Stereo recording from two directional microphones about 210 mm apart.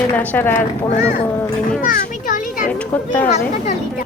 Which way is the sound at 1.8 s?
40° left (ahead or behind).